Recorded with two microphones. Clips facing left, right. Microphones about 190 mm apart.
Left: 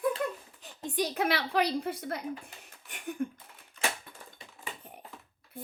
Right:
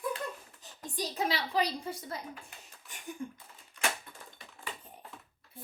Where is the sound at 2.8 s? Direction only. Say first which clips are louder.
Left 7 dB; 60° left (ahead or behind).